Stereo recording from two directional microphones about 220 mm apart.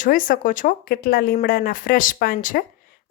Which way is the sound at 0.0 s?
40° left (ahead or behind).